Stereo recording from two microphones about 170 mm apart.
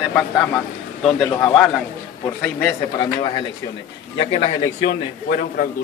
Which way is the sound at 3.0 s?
25° left (ahead or behind).